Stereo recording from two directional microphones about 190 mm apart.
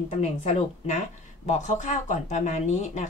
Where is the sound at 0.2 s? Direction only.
35° left (ahead or behind).